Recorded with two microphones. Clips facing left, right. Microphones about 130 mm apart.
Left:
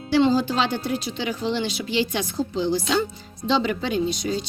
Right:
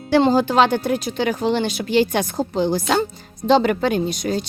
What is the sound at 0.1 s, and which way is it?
Speech, 50° right (ahead or behind).